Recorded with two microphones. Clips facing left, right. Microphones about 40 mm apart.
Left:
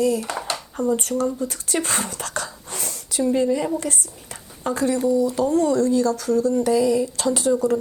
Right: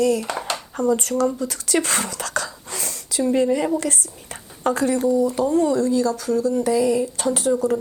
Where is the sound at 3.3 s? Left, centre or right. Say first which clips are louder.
Right 2 dB; right.